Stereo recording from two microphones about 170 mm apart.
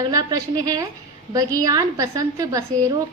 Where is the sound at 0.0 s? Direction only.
20° right (ahead or behind).